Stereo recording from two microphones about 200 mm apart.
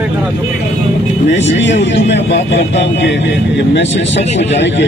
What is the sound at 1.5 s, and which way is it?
Speech, 65° left (ahead or behind).